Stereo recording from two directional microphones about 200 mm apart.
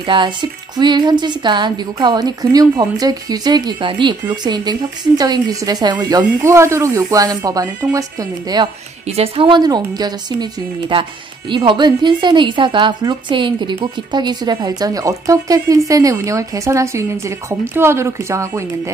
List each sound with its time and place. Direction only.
0.0 s a woman's voice: 25° right (ahead or behind)
9.0 s a woman's voice: 30° right (ahead or behind); by 18.7 s 15° right (ahead or behind)